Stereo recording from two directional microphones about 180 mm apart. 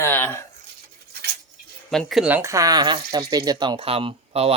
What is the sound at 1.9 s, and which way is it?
Speech, centre (ahead or behind).